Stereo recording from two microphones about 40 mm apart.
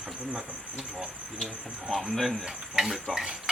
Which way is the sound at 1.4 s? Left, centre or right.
Centre.